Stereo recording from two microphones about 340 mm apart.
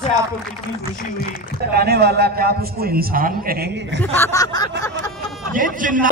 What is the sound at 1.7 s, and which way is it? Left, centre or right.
A man's voice, right.